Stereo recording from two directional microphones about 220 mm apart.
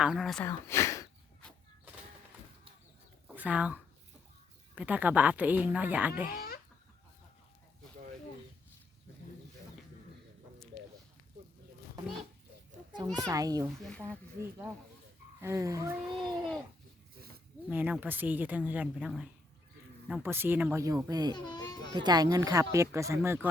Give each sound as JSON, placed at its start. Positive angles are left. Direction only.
{"t": 0.0, "sound": "speech", "side_deg": 0}
{"t": 0.4, "sound": "a sound", "side_deg": 10}
{"t": 3.2, "sound": "speech", "side_deg": -5}
{"t": 6.3, "sound": "a sound", "side_deg": 45}
{"t": 12.9, "sound": "children playing", "side_deg": -20}
{"t": 13.2, "sound": "speech", "side_deg": -15}
{"t": 15.4, "sound": "speech", "side_deg": -15}
{"t": 17.7, "sound": "speech", "side_deg": -5}
{"t": 21.3, "sound": "a child's voice", "side_deg": 20}
{"t": 21.9, "sound": "speech", "side_deg": -20}